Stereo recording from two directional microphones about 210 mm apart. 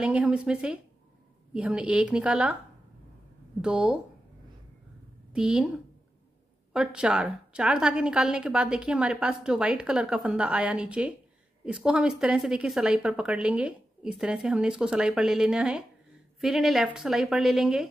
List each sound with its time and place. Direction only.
0.0 s a woman's voice: 5° right (ahead or behind)
3.6 s a woman's voice: 5° right (ahead or behind)
5.3 s a woman's voice: 5° right (ahead or behind)